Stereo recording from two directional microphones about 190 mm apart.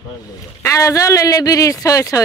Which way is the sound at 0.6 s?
15° left (ahead or behind).